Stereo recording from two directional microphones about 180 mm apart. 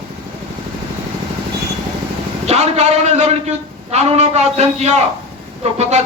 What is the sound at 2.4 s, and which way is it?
A man's voice, 35° right (ahead or behind).